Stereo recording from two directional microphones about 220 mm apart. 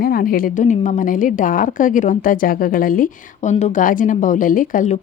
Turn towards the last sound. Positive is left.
turn(degrees=35)  # may be behind; listen again after turning